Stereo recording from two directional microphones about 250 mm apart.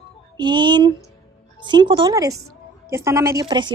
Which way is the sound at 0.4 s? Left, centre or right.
Centre.